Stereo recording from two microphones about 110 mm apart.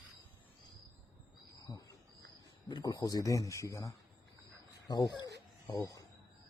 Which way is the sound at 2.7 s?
40° left (ahead or behind).